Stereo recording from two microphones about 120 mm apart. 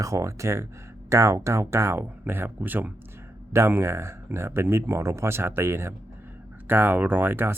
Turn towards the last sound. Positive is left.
turn(degrees=-20)  # may be behind; listen again after turning